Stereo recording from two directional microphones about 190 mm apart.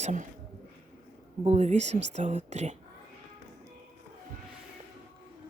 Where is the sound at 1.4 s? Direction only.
35° right (ahead or behind).